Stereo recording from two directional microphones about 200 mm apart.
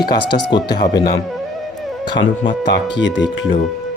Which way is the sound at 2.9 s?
65° left (ahead or behind).